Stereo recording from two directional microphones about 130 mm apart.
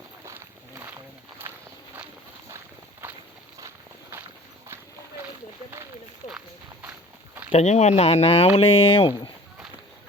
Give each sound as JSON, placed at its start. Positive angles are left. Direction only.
{"t": 1.5, "sound": "walk", "side_deg": -20}
{"t": 6.2, "sound": "walk", "side_deg": 65}
{"t": 7.5, "sound": "speech", "side_deg": 60}